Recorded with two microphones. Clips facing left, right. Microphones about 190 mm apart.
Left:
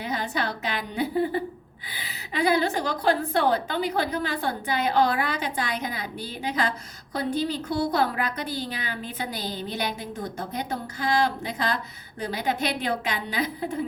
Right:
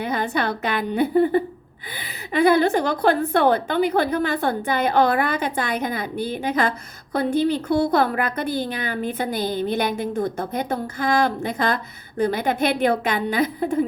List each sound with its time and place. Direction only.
0.0 s a woman's voice: 55° right (ahead or behind)